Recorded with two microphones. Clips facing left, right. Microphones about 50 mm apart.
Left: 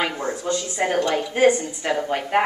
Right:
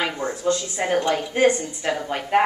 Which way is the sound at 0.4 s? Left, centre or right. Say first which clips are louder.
Right 2 dB; centre.